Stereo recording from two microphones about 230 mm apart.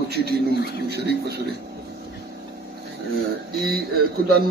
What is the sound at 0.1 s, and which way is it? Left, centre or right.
A man's voice, right.